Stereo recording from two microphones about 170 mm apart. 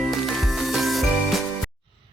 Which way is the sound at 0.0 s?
Centre (ahead or behind).